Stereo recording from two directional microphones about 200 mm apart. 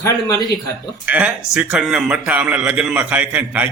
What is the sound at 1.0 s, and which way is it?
A man's voice, 5° right (ahead or behind).